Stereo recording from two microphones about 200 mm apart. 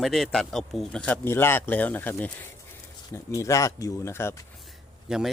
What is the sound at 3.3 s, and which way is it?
Speech, 15° left (ahead or behind).